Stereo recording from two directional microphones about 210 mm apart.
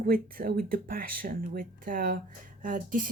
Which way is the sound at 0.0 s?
45° right (ahead or behind).